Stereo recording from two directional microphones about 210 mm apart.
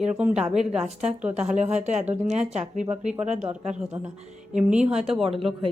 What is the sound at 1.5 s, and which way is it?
A woman's voice, 35° right (ahead or behind).